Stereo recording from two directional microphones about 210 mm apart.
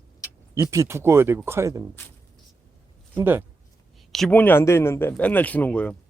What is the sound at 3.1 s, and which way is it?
Speech, 10° right (ahead or behind).